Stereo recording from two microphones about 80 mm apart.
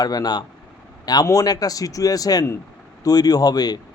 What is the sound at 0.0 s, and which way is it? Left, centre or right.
A man's voice, left.